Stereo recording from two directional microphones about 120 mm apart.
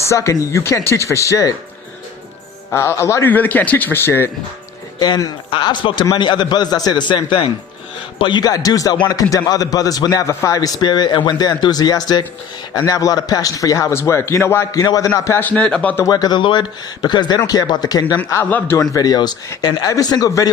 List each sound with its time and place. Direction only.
0.0 s a man's voice: 25° left (ahead or behind)
2.7 s a man's voice: 25° left (ahead or behind)
4.9 s a man's voice: 35° left (ahead or behind)
15.4 s speech: 10° left (ahead or behind)
16.0 s a man's voice: 35° left (ahead or behind)
18.4 s speech: 15° left (ahead or behind)
18.8 s a man's voice: 30° left (ahead or behind)